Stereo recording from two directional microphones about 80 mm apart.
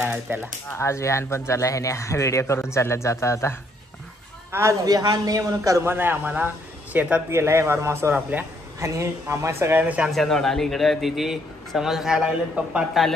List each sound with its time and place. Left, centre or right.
0.3 s a man's voice: right
0.7 s a man's voice: left
4.5 s a man's voice: right
4.8 s a man's voice: right
5.9 s a man's voice: right
7.2 s speech: right
8.3 s a man's voice: right
8.7 s speech: right
10.0 s a man's voice: centre